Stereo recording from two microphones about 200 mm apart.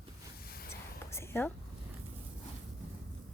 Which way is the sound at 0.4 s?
50° left (ahead or behind).